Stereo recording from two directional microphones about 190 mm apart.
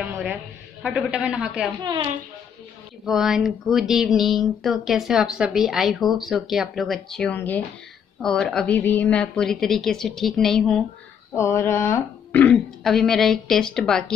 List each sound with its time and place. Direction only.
0.0 s a woman's voice: 5° right (ahead or behind)
1.8 s a woman's voice: 20° right (ahead or behind)
3.1 s speech: centre (ahead or behind)
11.3 s speech: 15° left (ahead or behind)